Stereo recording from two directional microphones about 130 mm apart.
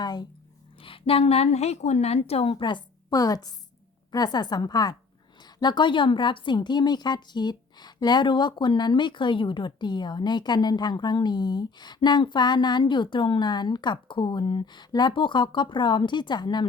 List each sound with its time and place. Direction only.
0.0 s a woman's voice: 30° left (ahead or behind)
0.8 s a woman's voice: 45° left (ahead or behind)
2.5 s a woman's voice: 35° left (ahead or behind)